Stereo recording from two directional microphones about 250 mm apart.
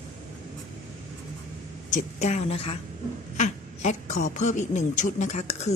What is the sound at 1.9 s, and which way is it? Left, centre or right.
Speech, left.